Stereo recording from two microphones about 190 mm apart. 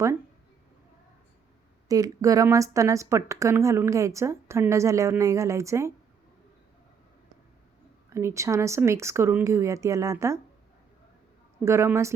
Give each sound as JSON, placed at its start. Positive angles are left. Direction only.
{"t": 1.9, "sound": "a woman's voice", "side_deg": -20}
{"t": 8.1, "sound": "a woman's voice", "side_deg": -15}
{"t": 11.6, "sound": "a woman's voice", "side_deg": -15}